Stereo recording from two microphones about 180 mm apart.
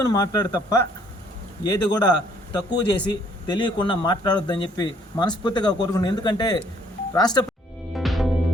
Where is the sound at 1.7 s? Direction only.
25° left (ahead or behind).